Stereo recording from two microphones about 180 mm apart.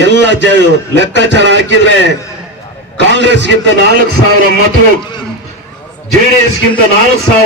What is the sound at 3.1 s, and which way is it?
Speech, 80° right.